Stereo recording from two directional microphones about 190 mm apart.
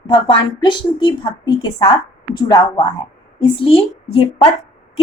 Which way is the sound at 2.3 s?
20° left (ahead or behind).